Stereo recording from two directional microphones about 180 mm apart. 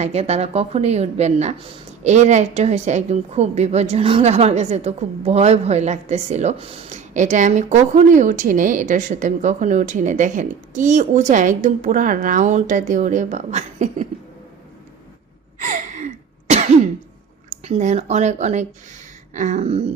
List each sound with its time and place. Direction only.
0.0 s speech: 35° right (ahead or behind)
15.5 s throat clearing: 45° right (ahead or behind)
17.5 s speech: 40° right (ahead or behind)